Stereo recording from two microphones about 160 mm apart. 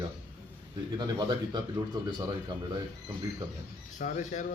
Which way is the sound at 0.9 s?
25° right (ahead or behind).